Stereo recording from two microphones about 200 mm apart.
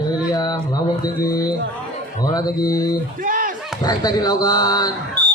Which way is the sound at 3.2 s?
40° right (ahead or behind).